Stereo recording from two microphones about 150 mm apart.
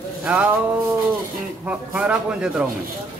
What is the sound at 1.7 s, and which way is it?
Speech, 5° right (ahead or behind).